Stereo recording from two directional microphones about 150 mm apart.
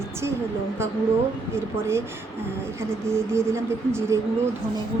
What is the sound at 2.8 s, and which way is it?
Speech, 15° right (ahead or behind).